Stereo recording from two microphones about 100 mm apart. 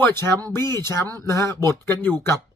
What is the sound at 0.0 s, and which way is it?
Speech, 25° left (ahead or behind).